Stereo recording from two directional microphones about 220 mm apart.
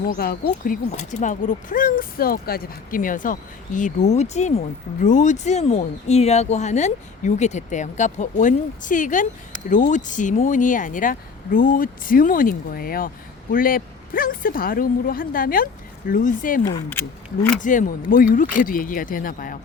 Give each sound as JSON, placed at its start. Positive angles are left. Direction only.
{"t": 0.2, "sound": "speech", "side_deg": 45}
{"t": 17.6, "sound": "speech", "side_deg": 35}